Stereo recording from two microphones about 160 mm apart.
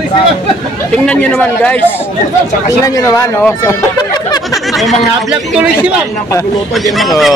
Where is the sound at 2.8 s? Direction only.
20° left (ahead or behind).